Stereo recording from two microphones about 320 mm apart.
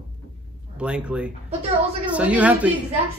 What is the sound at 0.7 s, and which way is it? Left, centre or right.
Speech, centre.